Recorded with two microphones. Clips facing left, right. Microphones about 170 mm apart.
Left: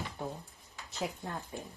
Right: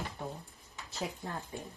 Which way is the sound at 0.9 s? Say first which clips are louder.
Left 1 dB; centre (ahead or behind).